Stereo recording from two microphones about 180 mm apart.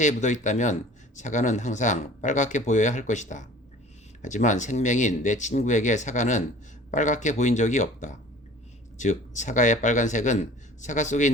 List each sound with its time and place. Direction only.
0.0 s speech: 40° left (ahead or behind)